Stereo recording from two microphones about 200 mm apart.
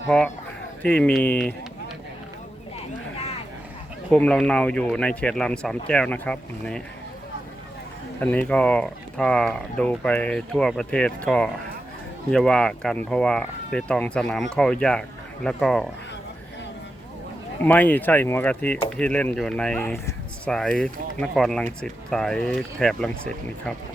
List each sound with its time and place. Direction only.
0.8 s speech: 5° left (ahead or behind)
2.7 s a sound: 30° left (ahead or behind)
4.1 s speech: 5° left (ahead or behind)
8.2 s speech: 5° left (ahead or behind)
17.6 s speech: 10° left (ahead or behind)